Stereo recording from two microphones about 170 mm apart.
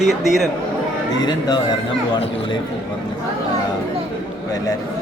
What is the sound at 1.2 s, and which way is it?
Speech, 25° left (ahead or behind).